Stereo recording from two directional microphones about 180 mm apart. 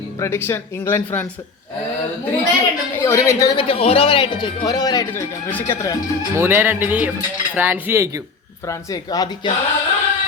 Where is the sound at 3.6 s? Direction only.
30° left (ahead or behind); by 5.9 s 15° left (ahead or behind).